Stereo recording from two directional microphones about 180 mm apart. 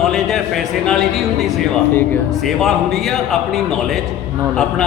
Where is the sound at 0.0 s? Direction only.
Centre (ahead or behind).